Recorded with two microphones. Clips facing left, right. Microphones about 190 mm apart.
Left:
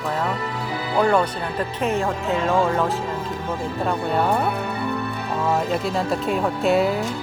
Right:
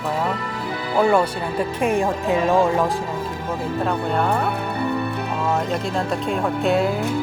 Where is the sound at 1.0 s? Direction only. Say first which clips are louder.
Right 2 dB; 10° right (ahead or behind).